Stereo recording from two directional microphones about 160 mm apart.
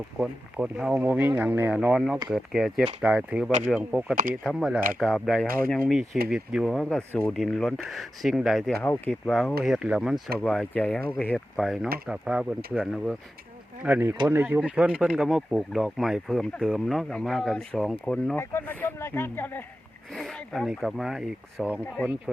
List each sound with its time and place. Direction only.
0.2 s speech: 5° right (ahead or behind)
4.1 s speech: 60° right (ahead or behind)
4.4 s speech: centre (ahead or behind)
5.5 s speech: 65° right (ahead or behind)
6.3 s speech: 5° right (ahead or behind)
8.8 s speech: 10° left (ahead or behind); by 10.2 s 5° right (ahead or behind)
10.4 s speech: 5° left (ahead or behind)
18.3 s speech: 15° left (ahead or behind)
20.1 s speech: centre (ahead or behind)